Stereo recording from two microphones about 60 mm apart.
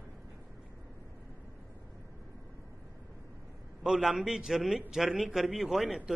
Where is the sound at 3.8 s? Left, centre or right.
Centre.